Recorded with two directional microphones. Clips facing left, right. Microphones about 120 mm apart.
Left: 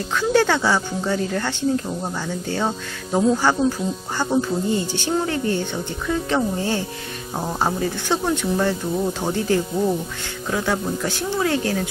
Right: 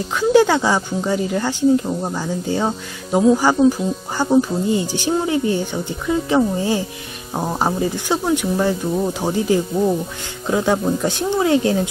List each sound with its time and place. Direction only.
0.2 s speech: 15° right (ahead or behind)